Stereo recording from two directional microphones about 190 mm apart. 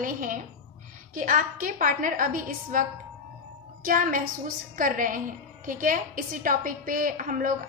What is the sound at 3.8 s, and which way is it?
A woman's voice, 45° right (ahead or behind).